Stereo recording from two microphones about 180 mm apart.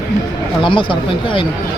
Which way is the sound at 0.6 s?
30° left (ahead or behind).